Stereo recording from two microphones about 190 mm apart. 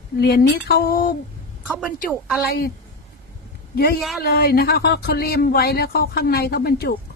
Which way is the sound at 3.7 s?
55° left (ahead or behind).